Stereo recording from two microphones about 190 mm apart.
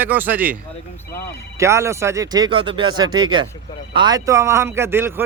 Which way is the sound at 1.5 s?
15° right (ahead or behind).